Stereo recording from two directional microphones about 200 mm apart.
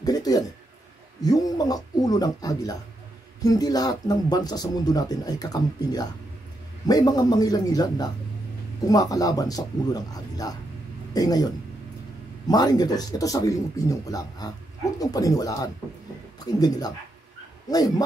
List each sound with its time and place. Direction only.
0.0 s speech: 20° left (ahead or behind)